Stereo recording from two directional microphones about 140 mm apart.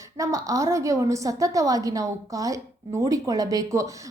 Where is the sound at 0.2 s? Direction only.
25° right (ahead or behind).